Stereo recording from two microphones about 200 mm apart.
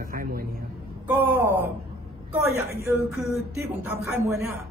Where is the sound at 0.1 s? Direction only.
45° right (ahead or behind).